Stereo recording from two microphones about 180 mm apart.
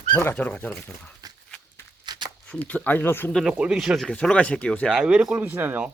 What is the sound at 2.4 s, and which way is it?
Speech, 5° left (ahead or behind).